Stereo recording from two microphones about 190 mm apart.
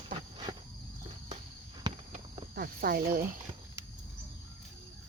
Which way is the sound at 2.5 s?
50° right (ahead or behind).